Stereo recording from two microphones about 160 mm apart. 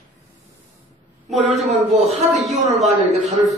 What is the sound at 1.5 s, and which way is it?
Speech, 40° right (ahead or behind).